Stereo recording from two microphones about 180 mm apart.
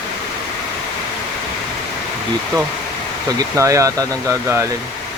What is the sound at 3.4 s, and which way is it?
Speech, 15° right (ahead or behind).